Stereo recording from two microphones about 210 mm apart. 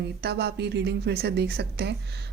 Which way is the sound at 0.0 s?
50° right (ahead or behind).